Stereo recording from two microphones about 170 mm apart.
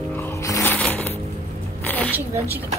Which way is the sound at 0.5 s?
10° left (ahead or behind).